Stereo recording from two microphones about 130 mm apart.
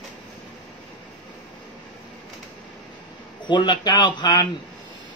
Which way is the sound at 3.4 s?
35° left (ahead or behind).